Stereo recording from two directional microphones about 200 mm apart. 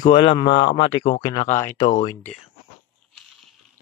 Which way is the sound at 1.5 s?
10° left (ahead or behind).